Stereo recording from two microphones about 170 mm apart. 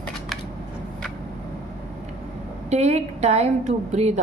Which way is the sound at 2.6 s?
40° right (ahead or behind).